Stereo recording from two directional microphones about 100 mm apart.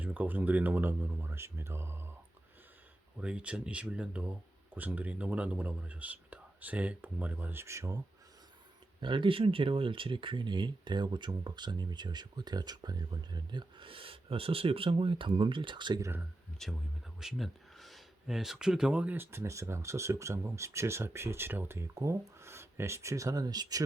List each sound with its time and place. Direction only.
0.0 s speech: 15° right (ahead or behind)
3.2 s speech: 10° right (ahead or behind); by 8.0 s 35° right (ahead or behind)
9.0 s speech: 55° right (ahead or behind)
16.0 s speech: 30° right (ahead or behind)
16.6 s speech: centre (ahead or behind); by 23.8 s 40° right (ahead or behind)